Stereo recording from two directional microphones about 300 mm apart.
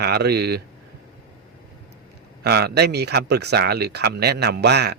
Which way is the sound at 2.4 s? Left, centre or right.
Right.